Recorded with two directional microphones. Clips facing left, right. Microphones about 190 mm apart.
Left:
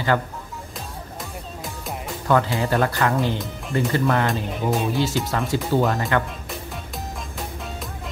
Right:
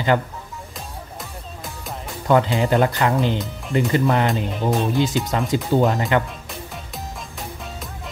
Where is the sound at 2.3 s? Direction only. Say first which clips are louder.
Right 3 dB; 20° right (ahead or behind).